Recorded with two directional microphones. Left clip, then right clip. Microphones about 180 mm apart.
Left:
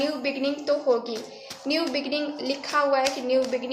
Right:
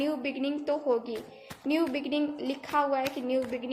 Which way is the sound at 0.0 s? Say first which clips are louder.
Left 5 dB; 50° right (ahead or behind).